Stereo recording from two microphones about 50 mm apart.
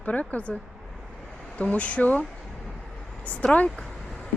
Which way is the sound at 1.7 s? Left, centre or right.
Left.